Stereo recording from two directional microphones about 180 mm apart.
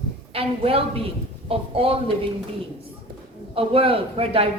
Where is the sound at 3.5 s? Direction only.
30° right (ahead or behind).